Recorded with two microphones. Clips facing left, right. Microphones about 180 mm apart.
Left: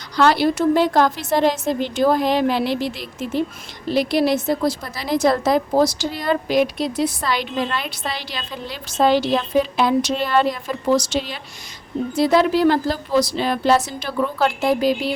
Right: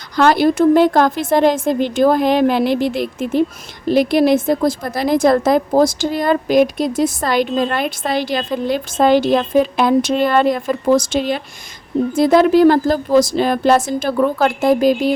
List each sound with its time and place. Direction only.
0.2 s a woman's voice: 50° right (ahead or behind)